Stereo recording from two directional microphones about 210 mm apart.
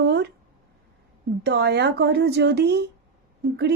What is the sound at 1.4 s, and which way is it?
A woman's voice, 50° right (ahead or behind).